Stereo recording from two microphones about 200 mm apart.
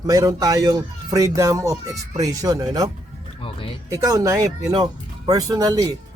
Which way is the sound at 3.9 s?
15° right (ahead or behind).